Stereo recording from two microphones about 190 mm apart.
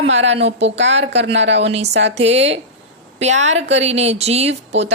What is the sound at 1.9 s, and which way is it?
Speech, 65° right (ahead or behind).